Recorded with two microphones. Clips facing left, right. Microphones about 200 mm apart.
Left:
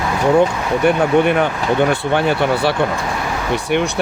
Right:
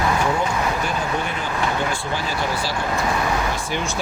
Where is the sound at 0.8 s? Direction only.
65° left (ahead or behind).